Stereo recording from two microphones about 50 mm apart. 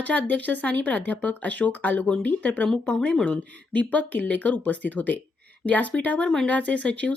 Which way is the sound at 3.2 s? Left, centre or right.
Left.